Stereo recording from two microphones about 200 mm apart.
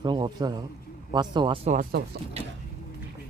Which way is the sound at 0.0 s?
20° right (ahead or behind).